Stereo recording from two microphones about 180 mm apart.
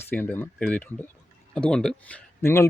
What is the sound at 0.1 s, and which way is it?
Speech, 10° left (ahead or behind).